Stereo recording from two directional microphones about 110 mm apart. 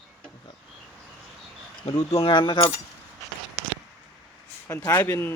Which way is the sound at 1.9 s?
60° left (ahead or behind).